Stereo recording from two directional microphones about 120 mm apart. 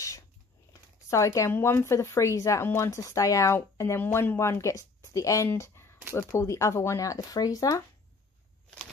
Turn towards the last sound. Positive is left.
turn(degrees=30)  # may be behind; listen again after turning